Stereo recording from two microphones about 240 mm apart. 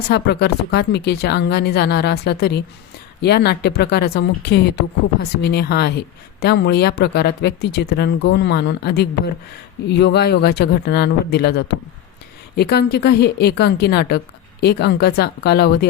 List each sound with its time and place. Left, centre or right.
0.1 s a woman's voice: left